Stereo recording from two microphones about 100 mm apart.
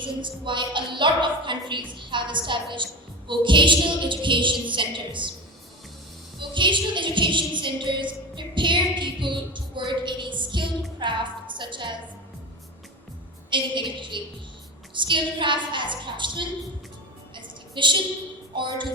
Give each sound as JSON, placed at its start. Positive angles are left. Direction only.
{"t": 0.0, "sound": "a woman's voice", "side_deg": -55}
{"t": 6.4, "sound": "music", "side_deg": -55}
{"t": 11.0, "sound": "a sound", "side_deg": -55}
{"t": 13.5, "sound": "a woman's voice", "side_deg": -55}
{"t": 17.3, "sound": "music", "side_deg": -55}